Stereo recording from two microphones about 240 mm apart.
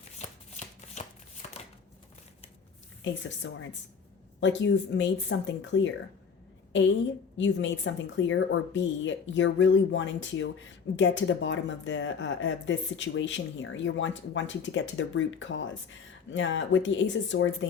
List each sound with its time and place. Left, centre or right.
0.2 s shuffling cards: left
3.0 s speech: left